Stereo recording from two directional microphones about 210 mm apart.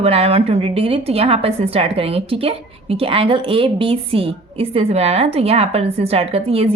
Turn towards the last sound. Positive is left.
turn(degrees=-30)  # may be behind; listen again after turning